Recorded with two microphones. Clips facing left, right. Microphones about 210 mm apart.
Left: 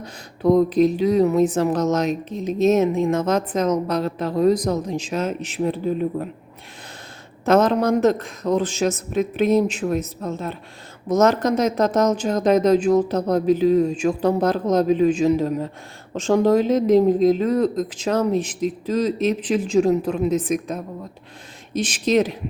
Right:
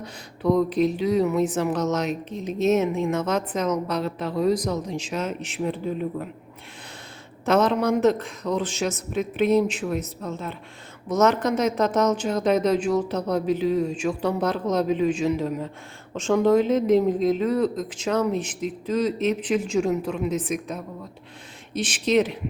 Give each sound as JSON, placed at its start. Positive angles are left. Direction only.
{"t": 0.0, "sound": "a woman's voice", "side_deg": 40}
{"t": 7.4, "sound": "a woman's voice", "side_deg": 40}